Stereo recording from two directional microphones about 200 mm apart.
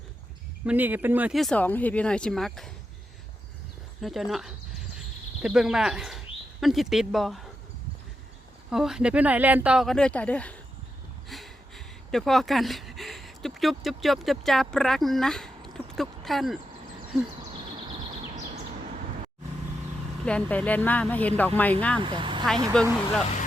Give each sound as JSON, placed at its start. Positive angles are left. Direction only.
{"t": 0.6, "sound": "speech", "side_deg": -10}
{"t": 4.0, "sound": "speech", "side_deg": 0}
{"t": 8.7, "sound": "speech", "side_deg": 0}
{"t": 20.2, "sound": "speech", "side_deg": 5}
{"t": 22.0, "sound": "speech", "side_deg": -25}
{"t": 22.8, "sound": "speech", "side_deg": 5}